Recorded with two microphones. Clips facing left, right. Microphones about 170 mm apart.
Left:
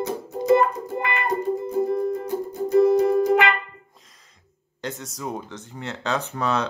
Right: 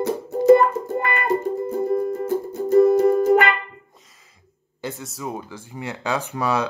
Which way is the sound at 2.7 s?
45° right (ahead or behind).